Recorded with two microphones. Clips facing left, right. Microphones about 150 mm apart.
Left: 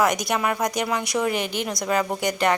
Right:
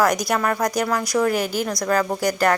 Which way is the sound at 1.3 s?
40° right (ahead or behind).